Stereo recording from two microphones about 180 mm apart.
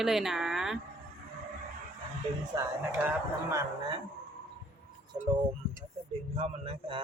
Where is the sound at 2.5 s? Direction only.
15° right (ahead or behind).